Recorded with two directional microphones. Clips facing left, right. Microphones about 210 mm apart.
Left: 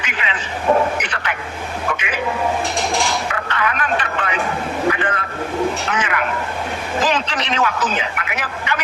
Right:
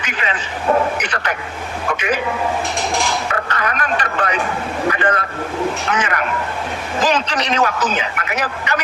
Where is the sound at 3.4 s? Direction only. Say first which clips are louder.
Even; 40° right (ahead or behind).